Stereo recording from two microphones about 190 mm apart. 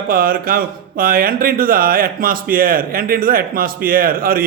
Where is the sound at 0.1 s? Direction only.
50° right (ahead or behind).